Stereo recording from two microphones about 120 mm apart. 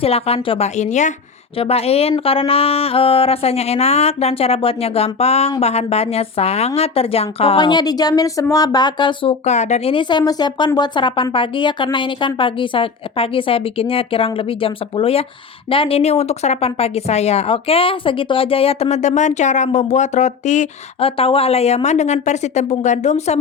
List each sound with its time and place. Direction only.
0.0 s speech: 55° left (ahead or behind)
0.8 s speech: 80° left
1.5 s speech: 55° left (ahead or behind)
7.6 s speech: 35° left (ahead or behind)
9.4 s speech: 75° left (ahead or behind)
9.9 s a woman's voice: 40° left (ahead or behind); by 20.7 s 90° left
21.0 s speech: 50° left (ahead or behind); by 23.4 s 65° left (ahead or behind)